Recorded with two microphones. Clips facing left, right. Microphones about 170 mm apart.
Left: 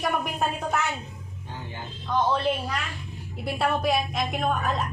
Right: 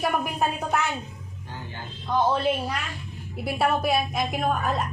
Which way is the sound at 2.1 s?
Centre (ahead or behind).